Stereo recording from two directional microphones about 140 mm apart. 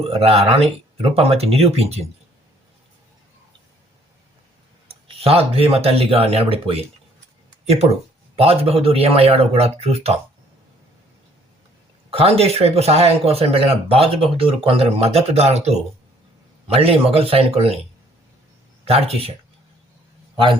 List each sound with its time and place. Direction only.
0.0 s speech: 45° right (ahead or behind)
5.0 s speech: 45° right (ahead or behind)
12.1 s speech: 45° right (ahead or behind)
18.9 s speech: 45° right (ahead or behind)